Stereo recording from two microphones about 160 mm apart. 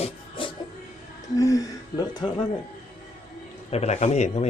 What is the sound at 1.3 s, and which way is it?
Speech, 20° left (ahead or behind).